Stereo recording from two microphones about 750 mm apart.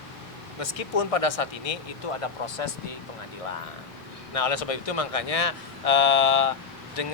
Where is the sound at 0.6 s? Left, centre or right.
Left.